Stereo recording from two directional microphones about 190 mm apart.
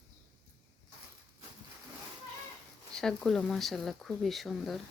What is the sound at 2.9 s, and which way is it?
Speech, 5° left (ahead or behind).